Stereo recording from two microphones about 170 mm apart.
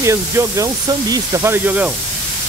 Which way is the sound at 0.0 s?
15° right (ahead or behind).